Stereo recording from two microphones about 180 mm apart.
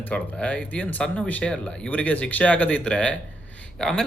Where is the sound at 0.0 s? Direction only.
5° left (ahead or behind).